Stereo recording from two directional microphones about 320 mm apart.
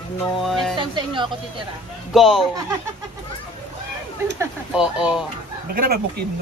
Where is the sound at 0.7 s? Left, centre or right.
Centre.